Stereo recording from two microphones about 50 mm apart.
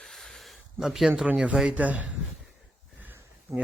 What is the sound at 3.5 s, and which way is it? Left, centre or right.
Speech, right.